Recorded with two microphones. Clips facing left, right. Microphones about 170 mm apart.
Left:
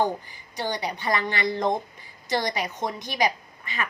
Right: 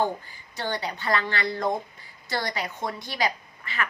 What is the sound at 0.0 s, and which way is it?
A woman's voice, 15° left (ahead or behind).